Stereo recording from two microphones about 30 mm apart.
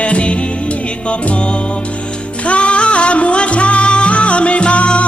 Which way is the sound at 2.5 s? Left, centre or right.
Left.